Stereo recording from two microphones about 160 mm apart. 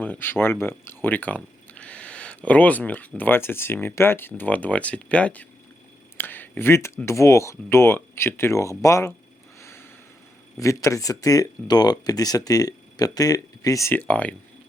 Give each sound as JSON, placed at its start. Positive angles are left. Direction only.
{"t": 0.0, "sound": "speech", "side_deg": 10}
{"t": 9.6, "sound": "a sound", "side_deg": 15}
{"t": 10.6, "sound": "speech", "side_deg": 20}